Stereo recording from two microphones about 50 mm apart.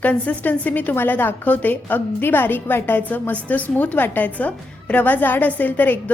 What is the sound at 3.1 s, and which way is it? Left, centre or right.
A woman's voice, left.